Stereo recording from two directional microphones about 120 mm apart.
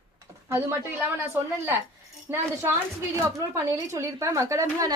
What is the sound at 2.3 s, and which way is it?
Speech, 20° right (ahead or behind).